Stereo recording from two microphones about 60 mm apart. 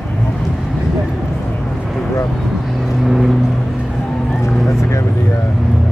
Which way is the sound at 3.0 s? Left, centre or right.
Centre.